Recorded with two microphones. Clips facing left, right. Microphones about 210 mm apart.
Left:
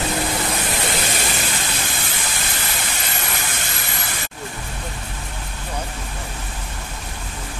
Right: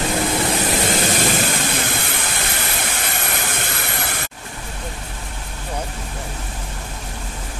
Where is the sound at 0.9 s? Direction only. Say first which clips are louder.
Right 5 dB; 50° right (ahead or behind).